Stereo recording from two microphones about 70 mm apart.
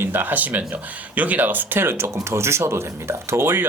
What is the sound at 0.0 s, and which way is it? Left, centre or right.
Speech, right.